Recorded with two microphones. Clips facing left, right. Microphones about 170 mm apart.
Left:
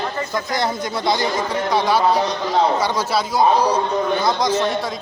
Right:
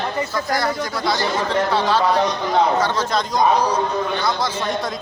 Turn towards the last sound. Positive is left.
turn(degrees=20)  # may be behind; listen again after turning